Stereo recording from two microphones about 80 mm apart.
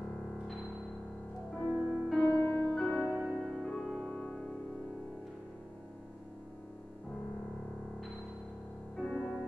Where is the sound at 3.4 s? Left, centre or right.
Centre.